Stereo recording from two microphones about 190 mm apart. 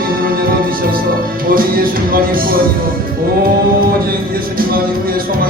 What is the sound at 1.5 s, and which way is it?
Music, 50° right (ahead or behind).